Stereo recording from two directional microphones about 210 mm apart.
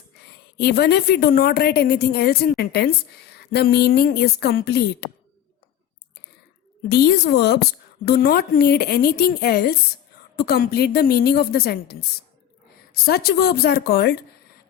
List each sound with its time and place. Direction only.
0.5 s a woman's voice: 50° left (ahead or behind)
6.8 s a woman's voice: 50° left (ahead or behind)